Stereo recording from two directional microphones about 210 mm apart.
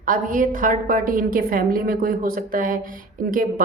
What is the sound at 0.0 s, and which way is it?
A woman's voice, 40° right (ahead or behind).